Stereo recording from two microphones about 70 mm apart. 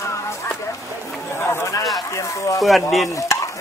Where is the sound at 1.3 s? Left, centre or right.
Left.